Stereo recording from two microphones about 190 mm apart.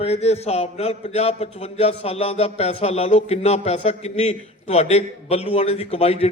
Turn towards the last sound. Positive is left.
turn(degrees=30)  # may be behind; listen again after turning